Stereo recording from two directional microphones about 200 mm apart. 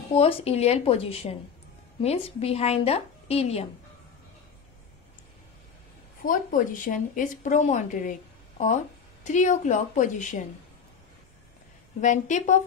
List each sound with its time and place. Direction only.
0.1 s a woman's voice: 30° left (ahead or behind)
6.2 s a woman's voice: 40° left (ahead or behind)
12.0 s a woman's voice: 40° left (ahead or behind)